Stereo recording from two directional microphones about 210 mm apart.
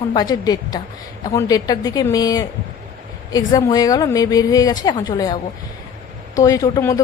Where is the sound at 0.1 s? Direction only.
20° left (ahead or behind).